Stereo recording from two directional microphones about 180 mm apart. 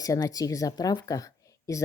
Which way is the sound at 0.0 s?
20° left (ahead or behind).